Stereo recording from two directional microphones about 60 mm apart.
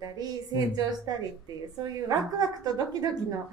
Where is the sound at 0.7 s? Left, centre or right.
Right.